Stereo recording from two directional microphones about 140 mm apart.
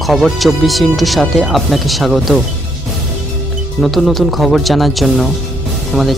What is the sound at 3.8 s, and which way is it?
Speech, centre (ahead or behind).